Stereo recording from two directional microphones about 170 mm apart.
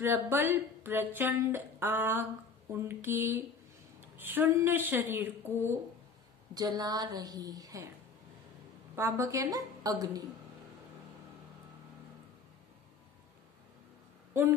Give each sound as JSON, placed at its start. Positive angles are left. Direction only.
{"t": 0.0, "sound": "a woman's voice", "side_deg": -15}
{"t": 8.9, "sound": "a woman's voice", "side_deg": -15}